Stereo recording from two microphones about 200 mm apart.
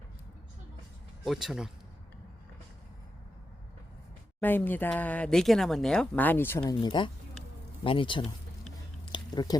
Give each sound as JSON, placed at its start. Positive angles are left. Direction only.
{"t": 1.2, "sound": "speech", "side_deg": 0}
{"t": 4.4, "sound": "speech", "side_deg": 10}
{"t": 6.8, "sound": "speech", "side_deg": 25}
{"t": 9.1, "sound": "a sound", "side_deg": 20}